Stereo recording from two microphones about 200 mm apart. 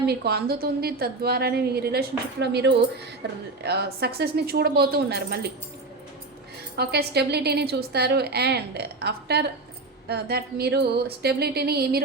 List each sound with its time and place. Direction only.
0.0 s a woman's voice: 55° right (ahead or behind)
6.7 s a woman's voice: 55° right (ahead or behind)